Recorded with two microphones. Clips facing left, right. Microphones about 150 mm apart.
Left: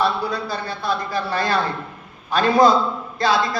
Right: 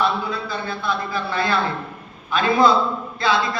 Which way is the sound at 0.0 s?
40° left (ahead or behind).